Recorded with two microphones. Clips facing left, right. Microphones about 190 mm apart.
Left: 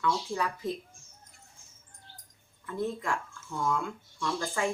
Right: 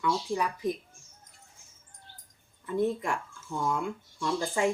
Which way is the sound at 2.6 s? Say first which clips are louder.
Right 4 dB; 20° right (ahead or behind).